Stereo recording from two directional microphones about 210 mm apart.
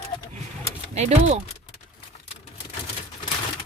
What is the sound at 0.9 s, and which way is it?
Speech, 30° right (ahead or behind).